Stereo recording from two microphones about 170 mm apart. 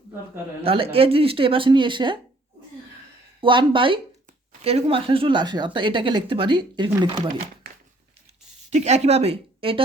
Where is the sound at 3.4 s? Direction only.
30° right (ahead or behind).